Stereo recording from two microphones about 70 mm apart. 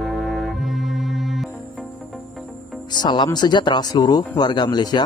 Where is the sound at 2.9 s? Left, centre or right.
Left.